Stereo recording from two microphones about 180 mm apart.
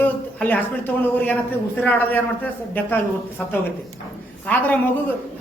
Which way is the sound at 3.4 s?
10° left (ahead or behind).